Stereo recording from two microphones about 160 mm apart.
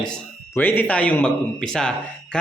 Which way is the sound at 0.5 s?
10° left (ahead or behind).